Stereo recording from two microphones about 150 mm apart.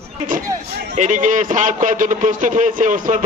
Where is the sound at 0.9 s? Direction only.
55° right (ahead or behind).